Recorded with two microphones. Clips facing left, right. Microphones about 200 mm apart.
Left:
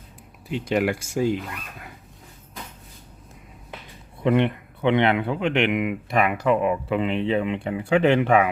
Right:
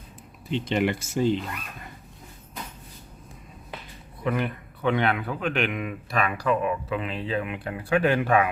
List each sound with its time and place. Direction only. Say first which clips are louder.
0.5 s speech: left 2 dB; 5° left (ahead or behind)
4.2 s speech: left 7 dB; 25° left (ahead or behind)